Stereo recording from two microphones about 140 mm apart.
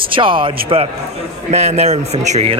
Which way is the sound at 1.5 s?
50° right (ahead or behind).